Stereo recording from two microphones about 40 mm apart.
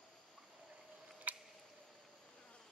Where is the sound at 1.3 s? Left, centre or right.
Right.